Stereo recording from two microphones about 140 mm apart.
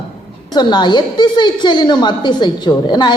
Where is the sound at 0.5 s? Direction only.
30° left (ahead or behind).